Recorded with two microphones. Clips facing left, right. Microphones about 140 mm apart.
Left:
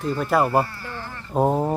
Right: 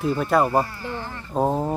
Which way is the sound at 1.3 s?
10° left (ahead or behind).